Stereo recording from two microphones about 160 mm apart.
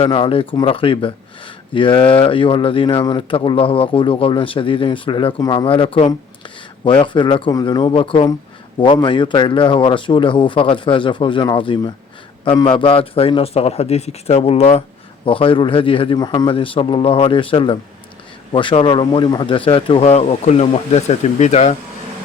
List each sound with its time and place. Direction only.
0.0 s speech: 35° left (ahead or behind)